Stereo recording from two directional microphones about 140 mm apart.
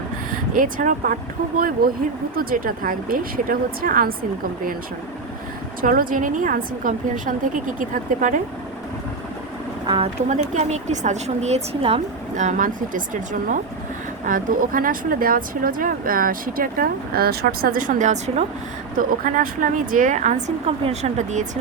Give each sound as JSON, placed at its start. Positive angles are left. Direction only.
{"t": 0.5, "sound": "speech", "side_deg": -70}
{"t": 5.8, "sound": "a woman's voice", "side_deg": -85}
{"t": 10.2, "sound": "a woman's voice", "side_deg": -60}
{"t": 12.4, "sound": "a woman's voice", "side_deg": -65}
{"t": 18.9, "sound": "a woman's voice", "side_deg": -75}